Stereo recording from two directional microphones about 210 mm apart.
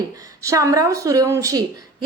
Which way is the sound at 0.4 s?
15° right (ahead or behind).